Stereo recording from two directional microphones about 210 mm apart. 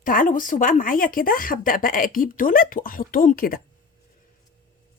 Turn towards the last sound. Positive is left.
turn(degrees=45)  # may be behind; listen again after turning